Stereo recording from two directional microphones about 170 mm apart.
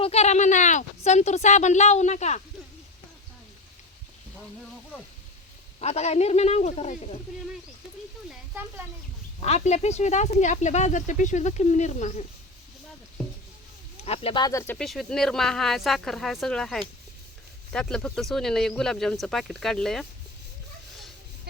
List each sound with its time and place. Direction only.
0.0 s speech: 40° left (ahead or behind)
5.8 s speech: 40° left (ahead or behind)
9.4 s speech: 40° left (ahead or behind)
14.0 s speech: 35° left (ahead or behind); by 14.8 s 10° left (ahead or behind)
14.8 s speech: centre (ahead or behind)